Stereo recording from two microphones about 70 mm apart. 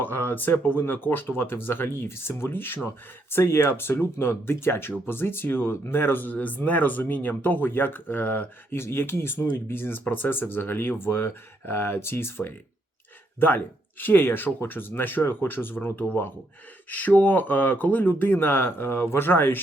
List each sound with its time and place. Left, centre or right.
0.0 s speech: left